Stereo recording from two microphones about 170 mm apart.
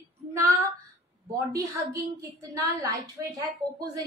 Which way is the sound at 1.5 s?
20° right (ahead or behind).